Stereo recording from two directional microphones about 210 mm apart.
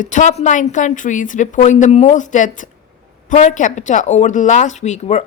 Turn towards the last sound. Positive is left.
turn(degrees=35)  # may be behind; listen again after turning